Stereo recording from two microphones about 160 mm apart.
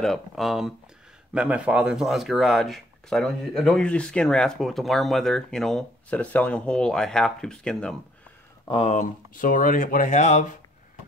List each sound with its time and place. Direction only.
0.0 s speech: centre (ahead or behind)
8.6 s speech: 35° left (ahead or behind)
8.9 s speech: 55° left (ahead or behind)